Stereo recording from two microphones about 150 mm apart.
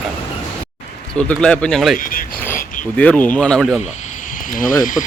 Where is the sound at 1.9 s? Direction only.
65° left (ahead or behind).